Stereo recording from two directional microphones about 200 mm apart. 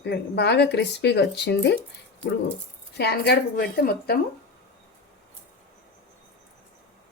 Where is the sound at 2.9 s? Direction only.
55° left (ahead or behind).